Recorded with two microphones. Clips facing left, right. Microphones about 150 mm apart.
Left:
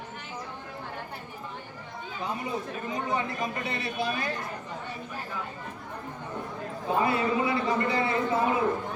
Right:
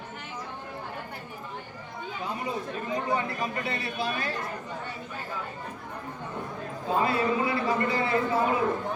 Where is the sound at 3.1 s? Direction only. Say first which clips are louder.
Even; 20° left (ahead or behind).